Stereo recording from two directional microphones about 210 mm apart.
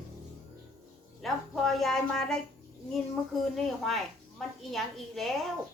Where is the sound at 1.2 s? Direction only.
Centre (ahead or behind).